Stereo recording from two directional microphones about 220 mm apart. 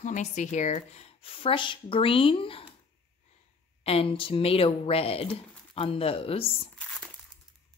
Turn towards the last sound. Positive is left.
turn(degrees=25)  # may be behind; listen again after turning